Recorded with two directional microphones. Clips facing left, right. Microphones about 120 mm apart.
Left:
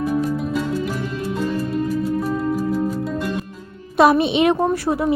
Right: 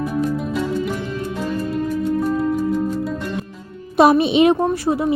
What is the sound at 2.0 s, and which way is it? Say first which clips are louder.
Music: right 2 dB; centre (ahead or behind).